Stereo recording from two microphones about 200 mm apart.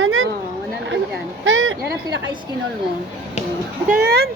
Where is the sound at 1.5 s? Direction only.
75° right (ahead or behind).